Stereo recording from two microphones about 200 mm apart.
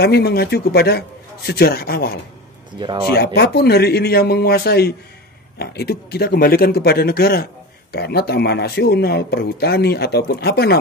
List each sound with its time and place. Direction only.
0.0 s speech: 50° left (ahead or behind)
2.8 s speech: 20° right (ahead or behind)
3.3 s speech: 55° left (ahead or behind)